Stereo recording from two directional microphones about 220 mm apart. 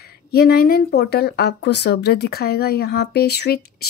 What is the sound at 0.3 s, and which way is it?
Speech, 45° left (ahead or behind).